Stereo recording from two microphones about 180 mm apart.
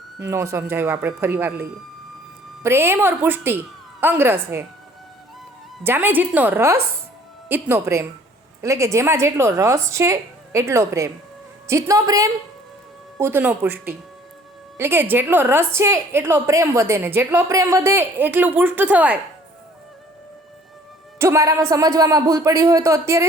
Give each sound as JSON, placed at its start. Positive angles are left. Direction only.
{"t": 0.2, "sound": "a woman's voice", "side_deg": -15}
{"t": 2.6, "sound": "a woman's voice", "side_deg": -15}
{"t": 5.8, "sound": "a woman's voice", "side_deg": -10}
{"t": 21.2, "sound": "speech", "side_deg": -15}